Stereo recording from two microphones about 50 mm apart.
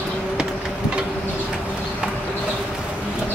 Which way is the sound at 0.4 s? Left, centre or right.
Centre.